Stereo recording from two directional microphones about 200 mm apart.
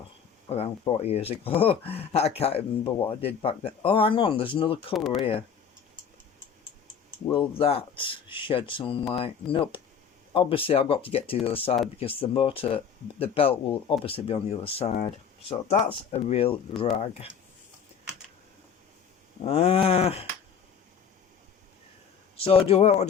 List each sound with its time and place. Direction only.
0.5 s speech: 30° left (ahead or behind)
7.3 s speech: 30° left (ahead or behind)
19.5 s speech: 30° left (ahead or behind)
22.4 s speech: 30° left (ahead or behind)